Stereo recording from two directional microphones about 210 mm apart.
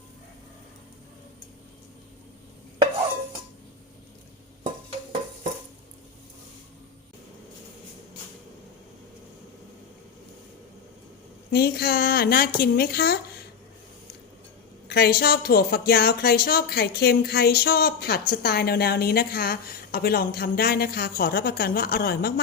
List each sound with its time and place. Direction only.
11.5 s speech: 50° left (ahead or behind)
14.8 s speech: 50° left (ahead or behind)